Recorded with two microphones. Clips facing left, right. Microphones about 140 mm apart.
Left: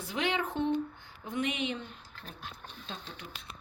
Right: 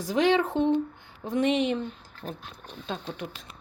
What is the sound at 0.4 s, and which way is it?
Speech, 25° right (ahead or behind).